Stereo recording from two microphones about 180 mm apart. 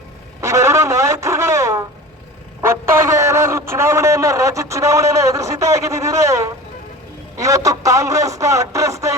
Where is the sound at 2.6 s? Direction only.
15° right (ahead or behind).